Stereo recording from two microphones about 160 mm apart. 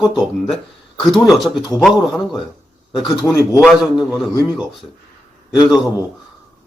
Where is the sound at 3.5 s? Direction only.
5° right (ahead or behind).